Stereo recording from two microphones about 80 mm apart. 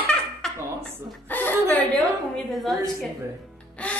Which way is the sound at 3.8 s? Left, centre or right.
Centre.